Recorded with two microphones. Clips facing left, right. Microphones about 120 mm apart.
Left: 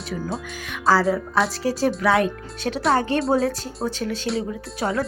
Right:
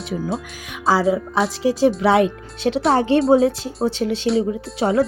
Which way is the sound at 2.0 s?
25° right (ahead or behind).